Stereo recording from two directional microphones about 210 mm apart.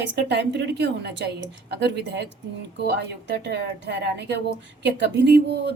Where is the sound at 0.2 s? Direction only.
55° right (ahead or behind).